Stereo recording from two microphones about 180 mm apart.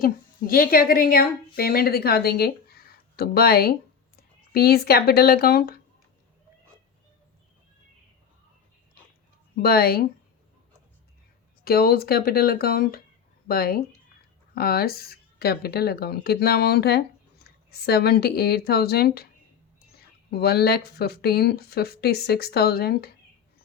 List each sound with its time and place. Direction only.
0.0 s a woman's voice: 55° left (ahead or behind)
9.6 s speech: 60° left (ahead or behind)
11.6 s speech: 60° left (ahead or behind)
20.3 s speech: 60° left (ahead or behind)